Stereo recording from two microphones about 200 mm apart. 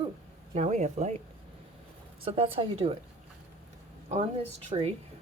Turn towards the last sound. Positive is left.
turn(degrees=-30)  # may be behind; listen again after turning